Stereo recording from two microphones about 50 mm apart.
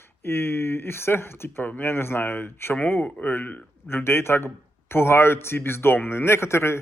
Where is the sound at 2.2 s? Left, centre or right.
Left.